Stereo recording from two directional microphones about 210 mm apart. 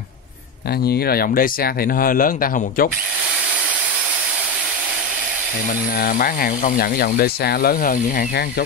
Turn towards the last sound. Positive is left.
turn(degrees=45)  # may be behind; listen again after turning